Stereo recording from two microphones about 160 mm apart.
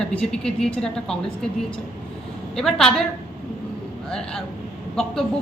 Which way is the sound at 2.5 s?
5° left (ahead or behind).